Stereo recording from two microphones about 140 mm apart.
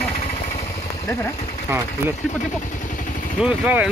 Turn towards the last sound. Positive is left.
turn(degrees=-10)  # may be behind; listen again after turning